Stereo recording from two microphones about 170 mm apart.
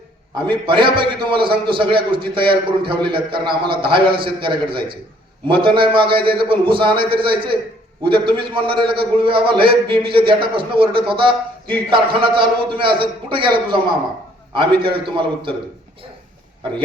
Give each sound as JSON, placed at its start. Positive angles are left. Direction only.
{"t": 0.5, "sound": "a man's voice", "side_deg": -30}